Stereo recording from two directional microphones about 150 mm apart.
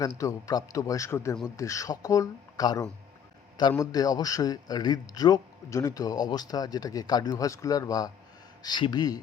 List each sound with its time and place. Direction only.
0.0 s a man's voice: 20° left (ahead or behind)